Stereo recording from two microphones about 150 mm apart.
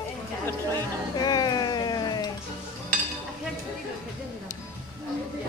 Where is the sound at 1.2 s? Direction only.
25° left (ahead or behind).